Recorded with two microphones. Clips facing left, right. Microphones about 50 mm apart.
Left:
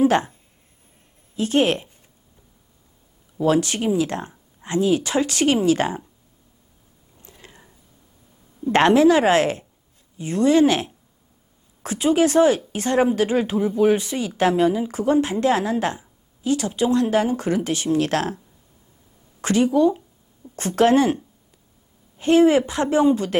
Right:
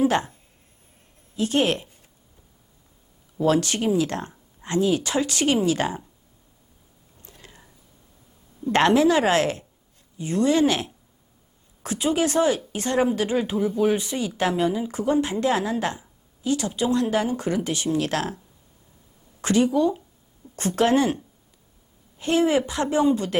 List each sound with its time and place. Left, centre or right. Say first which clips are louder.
0.0 s a woman's voice: left 3 dB; left
1.4 s speech: left 3 dB; left
3.4 s a woman's voice: left 2 dB; left
8.7 s a woman's voice: left 3 dB; left
19.4 s speech: left 2 dB; left
22.2 s speech: left 5 dB; left